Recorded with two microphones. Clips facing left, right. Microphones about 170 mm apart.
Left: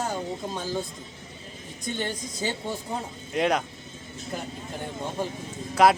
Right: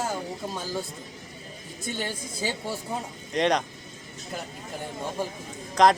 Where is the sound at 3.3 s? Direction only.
5° left (ahead or behind).